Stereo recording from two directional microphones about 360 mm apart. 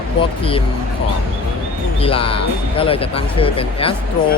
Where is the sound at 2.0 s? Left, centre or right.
Centre.